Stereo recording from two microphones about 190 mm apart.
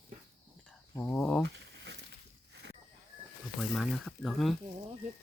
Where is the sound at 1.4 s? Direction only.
65° right (ahead or behind).